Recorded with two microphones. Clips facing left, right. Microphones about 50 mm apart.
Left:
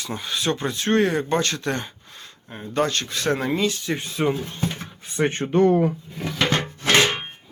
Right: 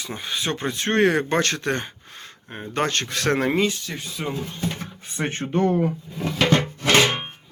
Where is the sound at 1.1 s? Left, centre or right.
Right.